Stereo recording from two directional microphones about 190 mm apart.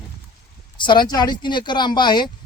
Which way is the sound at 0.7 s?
25° left (ahead or behind).